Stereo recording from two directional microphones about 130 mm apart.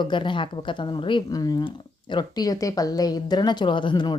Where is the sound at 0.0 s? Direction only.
40° left (ahead or behind).